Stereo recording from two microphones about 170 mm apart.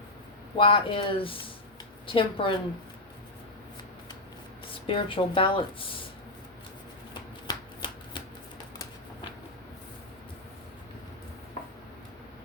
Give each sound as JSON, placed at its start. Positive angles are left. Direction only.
{"t": 0.5, "sound": "speech", "side_deg": 30}
{"t": 4.7, "sound": "speech", "side_deg": 30}
{"t": 7.1, "sound": "shuffling cards", "side_deg": 25}